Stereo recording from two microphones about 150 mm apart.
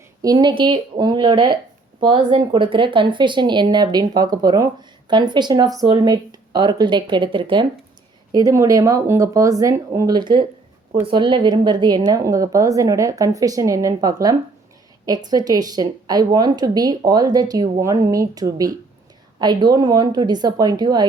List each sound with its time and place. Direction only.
0.2 s a woman's voice: 25° right (ahead or behind)